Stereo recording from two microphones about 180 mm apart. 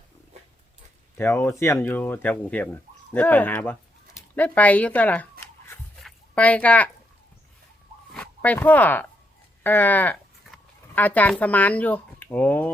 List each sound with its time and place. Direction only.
0.3 s dog: 35° right (ahead or behind)
1.1 s speech: 15° left (ahead or behind)
6.0 s a sound: 5° left (ahead or behind)
8.1 s speech: 5° left (ahead or behind)